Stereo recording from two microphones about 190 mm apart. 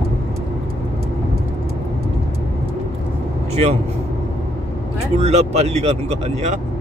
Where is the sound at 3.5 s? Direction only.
35° right (ahead or behind).